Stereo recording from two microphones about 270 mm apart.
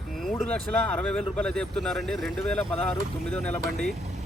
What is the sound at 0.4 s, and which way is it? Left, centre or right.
Speech, centre.